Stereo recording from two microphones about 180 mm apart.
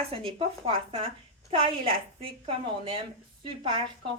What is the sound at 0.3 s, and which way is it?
A woman's voice, 30° right (ahead or behind).